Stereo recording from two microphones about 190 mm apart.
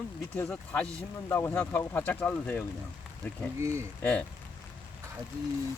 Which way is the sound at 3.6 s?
15° right (ahead or behind).